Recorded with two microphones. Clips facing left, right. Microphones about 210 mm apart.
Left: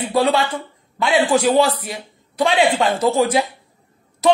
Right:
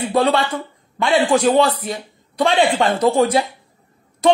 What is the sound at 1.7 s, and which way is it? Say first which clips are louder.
Speech: right 2 dB; 25° right (ahead or behind).